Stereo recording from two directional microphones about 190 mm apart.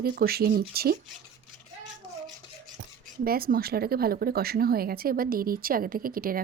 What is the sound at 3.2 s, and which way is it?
Speech, 50° right (ahead or behind).